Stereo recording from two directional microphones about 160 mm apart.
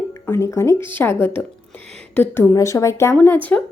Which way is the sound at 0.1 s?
20° left (ahead or behind).